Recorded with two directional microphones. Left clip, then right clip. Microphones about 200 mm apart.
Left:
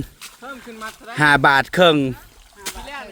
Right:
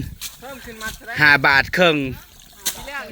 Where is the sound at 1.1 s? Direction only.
30° left (ahead or behind).